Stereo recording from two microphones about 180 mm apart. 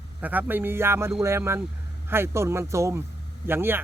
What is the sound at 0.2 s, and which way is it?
Speech, 10° right (ahead or behind).